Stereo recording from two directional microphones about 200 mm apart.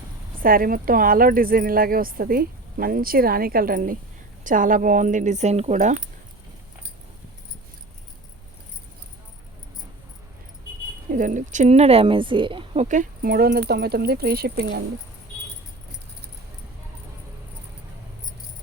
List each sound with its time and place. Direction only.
0.4 s a woman's voice: 45° right (ahead or behind)
11.1 s speech: 40° right (ahead or behind)